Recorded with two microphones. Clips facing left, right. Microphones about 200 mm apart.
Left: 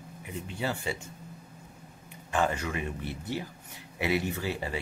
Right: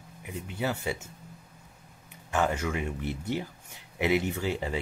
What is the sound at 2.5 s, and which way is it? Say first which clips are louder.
Speech: right 2 dB; 15° right (ahead or behind).